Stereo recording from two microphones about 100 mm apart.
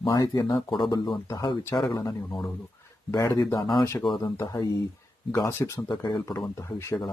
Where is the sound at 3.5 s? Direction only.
50° left (ahead or behind).